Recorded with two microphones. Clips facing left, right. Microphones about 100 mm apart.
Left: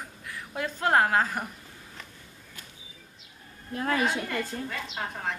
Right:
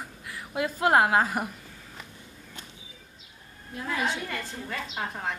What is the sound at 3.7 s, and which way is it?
Speech, 50° left (ahead or behind).